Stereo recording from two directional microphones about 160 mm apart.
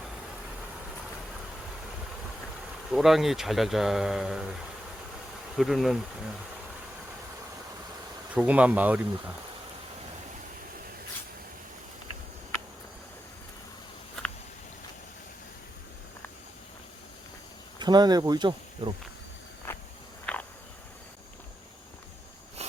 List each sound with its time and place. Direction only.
2.9 s speech: centre (ahead or behind)
5.5 s speech: centre (ahead or behind)
8.4 s speech: 10° right (ahead or behind)
17.7 s speech: 25° right (ahead or behind)
19.7 s walk: 15° left (ahead or behind)
20.3 s cricket: 10° left (ahead or behind)